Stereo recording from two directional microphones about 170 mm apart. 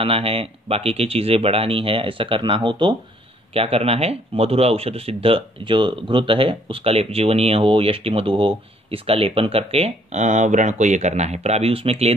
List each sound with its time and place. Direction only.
0.0 s speech: 30° right (ahead or behind)